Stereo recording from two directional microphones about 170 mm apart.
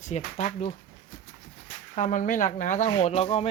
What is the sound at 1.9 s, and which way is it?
Speech, 50° left (ahead or behind).